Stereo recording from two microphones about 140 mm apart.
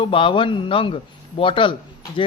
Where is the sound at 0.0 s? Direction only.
40° left (ahead or behind).